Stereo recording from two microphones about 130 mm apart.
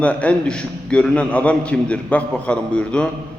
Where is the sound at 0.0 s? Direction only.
10° left (ahead or behind).